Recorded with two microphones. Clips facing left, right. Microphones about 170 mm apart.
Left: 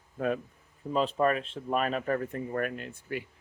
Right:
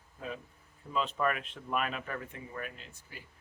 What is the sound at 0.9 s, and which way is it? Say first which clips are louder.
Speech: left 6 dB; 35° left (ahead or behind).